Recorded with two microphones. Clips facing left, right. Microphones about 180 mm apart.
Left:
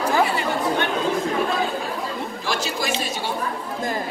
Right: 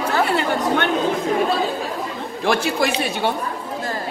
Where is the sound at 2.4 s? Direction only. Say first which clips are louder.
Right 8 dB; 60° right (ahead or behind).